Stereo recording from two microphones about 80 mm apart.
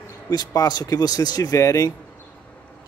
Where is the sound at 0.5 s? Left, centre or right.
Left.